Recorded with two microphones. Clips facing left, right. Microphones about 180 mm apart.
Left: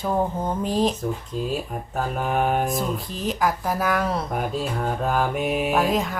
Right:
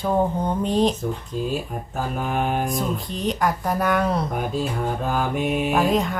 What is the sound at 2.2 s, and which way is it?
Speech, centre (ahead or behind).